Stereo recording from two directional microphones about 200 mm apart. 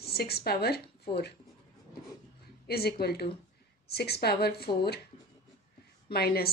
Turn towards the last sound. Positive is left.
turn(degrees=50)  # may be behind; listen again after turning